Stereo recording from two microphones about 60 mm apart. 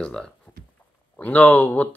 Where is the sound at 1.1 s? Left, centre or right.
Left.